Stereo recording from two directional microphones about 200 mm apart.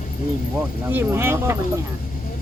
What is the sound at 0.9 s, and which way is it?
Speech, 10° right (ahead or behind).